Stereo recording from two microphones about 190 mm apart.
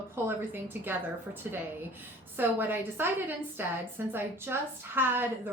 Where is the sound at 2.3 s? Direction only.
10° right (ahead or behind).